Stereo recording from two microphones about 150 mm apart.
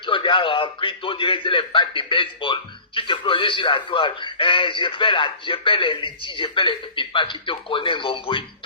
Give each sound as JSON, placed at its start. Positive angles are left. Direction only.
{"t": 0.0, "sound": "a man's voice", "side_deg": 35}